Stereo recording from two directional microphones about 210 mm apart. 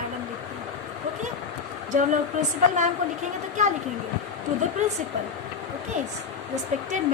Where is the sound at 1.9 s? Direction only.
35° right (ahead or behind).